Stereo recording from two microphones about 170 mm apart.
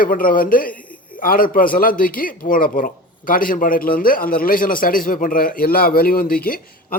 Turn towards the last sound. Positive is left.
turn(degrees=60)  # may be behind; listen again after turning